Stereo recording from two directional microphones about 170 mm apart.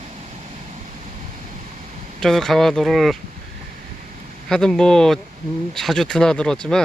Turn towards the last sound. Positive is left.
turn(degrees=5)  # may be behind; listen again after turning